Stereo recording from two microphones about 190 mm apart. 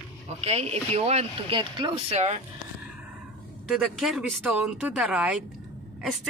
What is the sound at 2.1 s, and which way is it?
Speech, 35° right (ahead or behind).